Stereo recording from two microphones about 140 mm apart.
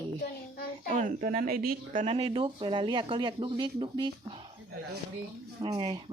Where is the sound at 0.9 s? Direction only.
70° right (ahead or behind).